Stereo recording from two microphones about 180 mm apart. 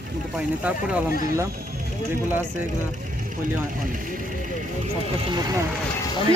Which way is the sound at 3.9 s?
50° right (ahead or behind).